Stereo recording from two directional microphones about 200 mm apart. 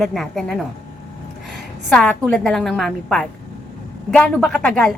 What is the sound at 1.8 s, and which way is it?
A woman's voice, 5° left (ahead or behind).